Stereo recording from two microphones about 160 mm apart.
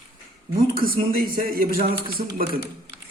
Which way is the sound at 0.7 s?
65° right (ahead or behind).